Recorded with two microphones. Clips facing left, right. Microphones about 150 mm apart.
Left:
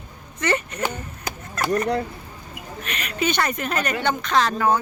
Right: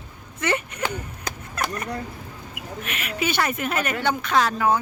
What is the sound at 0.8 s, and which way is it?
Chop, 5° left (ahead or behind).